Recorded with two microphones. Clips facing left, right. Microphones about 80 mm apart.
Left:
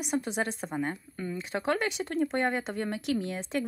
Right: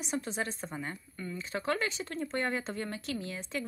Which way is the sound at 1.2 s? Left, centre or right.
Left.